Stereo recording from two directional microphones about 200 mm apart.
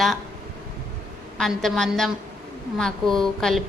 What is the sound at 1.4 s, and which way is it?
A woman's voice, centre (ahead or behind).